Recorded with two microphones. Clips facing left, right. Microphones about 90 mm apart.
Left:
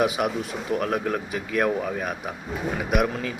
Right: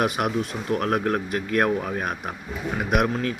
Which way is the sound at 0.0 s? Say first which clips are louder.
Even; 55° right (ahead or behind).